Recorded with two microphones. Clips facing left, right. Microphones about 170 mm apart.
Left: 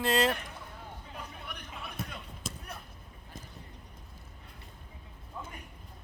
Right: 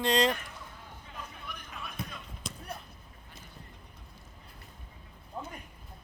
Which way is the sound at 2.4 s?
5° left (ahead or behind).